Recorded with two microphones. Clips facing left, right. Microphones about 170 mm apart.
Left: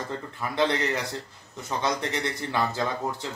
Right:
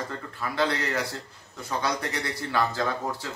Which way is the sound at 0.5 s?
20° left (ahead or behind).